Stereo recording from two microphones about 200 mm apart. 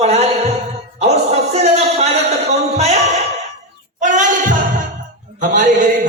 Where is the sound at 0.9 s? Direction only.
35° right (ahead or behind).